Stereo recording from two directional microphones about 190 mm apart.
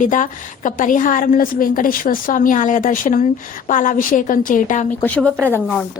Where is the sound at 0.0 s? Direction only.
40° left (ahead or behind).